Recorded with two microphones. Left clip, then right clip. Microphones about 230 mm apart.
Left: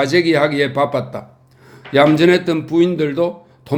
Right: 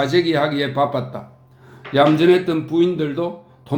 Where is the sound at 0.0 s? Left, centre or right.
Left.